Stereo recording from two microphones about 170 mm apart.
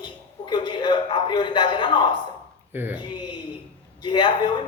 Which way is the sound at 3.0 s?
25° left (ahead or behind).